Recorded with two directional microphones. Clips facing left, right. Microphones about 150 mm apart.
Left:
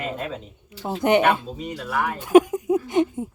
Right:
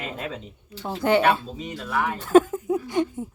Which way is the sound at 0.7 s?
15° left (ahead or behind).